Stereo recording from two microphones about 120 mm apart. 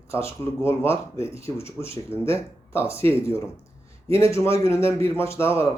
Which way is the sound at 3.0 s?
20° left (ahead or behind).